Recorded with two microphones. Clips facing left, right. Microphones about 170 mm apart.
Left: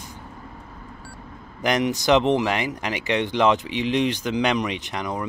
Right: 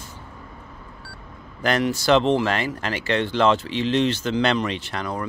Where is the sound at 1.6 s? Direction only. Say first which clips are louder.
Even; 20° left (ahead or behind).